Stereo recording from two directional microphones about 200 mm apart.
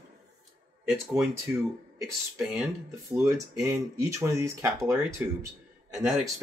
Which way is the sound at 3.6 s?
15° right (ahead or behind).